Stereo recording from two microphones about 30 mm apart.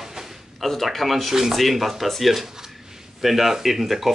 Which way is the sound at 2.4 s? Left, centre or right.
Centre.